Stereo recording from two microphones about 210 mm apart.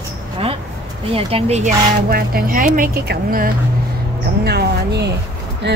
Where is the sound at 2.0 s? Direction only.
45° right (ahead or behind).